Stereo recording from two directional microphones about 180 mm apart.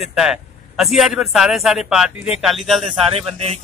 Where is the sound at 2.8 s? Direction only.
35° right (ahead or behind).